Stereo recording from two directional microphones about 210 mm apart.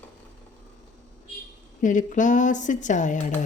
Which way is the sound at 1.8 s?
35° left (ahead or behind).